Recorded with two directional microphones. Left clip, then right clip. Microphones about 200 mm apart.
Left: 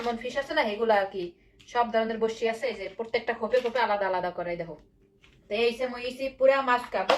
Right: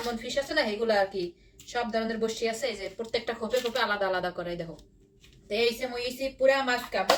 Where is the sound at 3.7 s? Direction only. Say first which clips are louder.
Left 2 dB; 30° right (ahead or behind).